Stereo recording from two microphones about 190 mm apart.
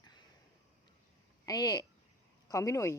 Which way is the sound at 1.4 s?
20° left (ahead or behind).